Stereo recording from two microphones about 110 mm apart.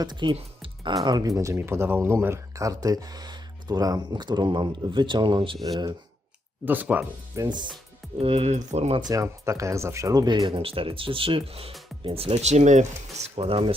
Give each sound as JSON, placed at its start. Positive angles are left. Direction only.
{"t": 0.0, "sound": "speech", "side_deg": -45}
{"t": 0.3, "sound": "music", "side_deg": -55}
{"t": 1.0, "sound": "speech", "side_deg": -35}
{"t": 1.4, "sound": "speech", "side_deg": -25}
{"t": 6.7, "sound": "speech", "side_deg": -15}
{"t": 7.3, "sound": "speech", "side_deg": -30}
{"t": 8.2, "sound": "speech", "side_deg": -65}
{"t": 9.0, "sound": "speech", "side_deg": -35}
{"t": 10.4, "sound": "speech", "side_deg": -60}